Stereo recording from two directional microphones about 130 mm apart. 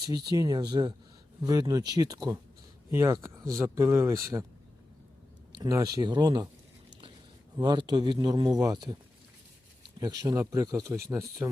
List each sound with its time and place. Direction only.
0.1 s speech: 30° right (ahead or behind)
5.5 s speech: 30° right (ahead or behind)
7.5 s speech: 35° right (ahead or behind)
10.0 s speech: 30° right (ahead or behind)